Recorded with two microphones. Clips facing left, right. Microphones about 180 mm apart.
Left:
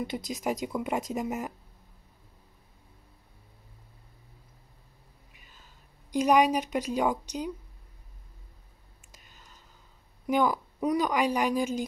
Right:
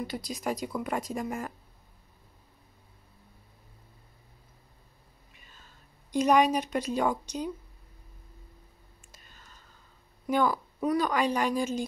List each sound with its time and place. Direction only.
0.0 s speech: 20° left (ahead or behind)
5.3 s whispering: 10° left (ahead or behind)
6.1 s a woman's voice: 10° left (ahead or behind)
9.1 s whispering: 15° left (ahead or behind)
10.2 s a woman's voice: 15° left (ahead or behind)